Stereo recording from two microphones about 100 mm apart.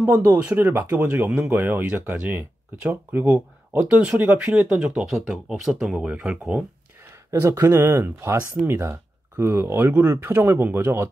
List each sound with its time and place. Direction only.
0.4 s speech: 15° right (ahead or behind)
7.2 s speech: 30° right (ahead or behind)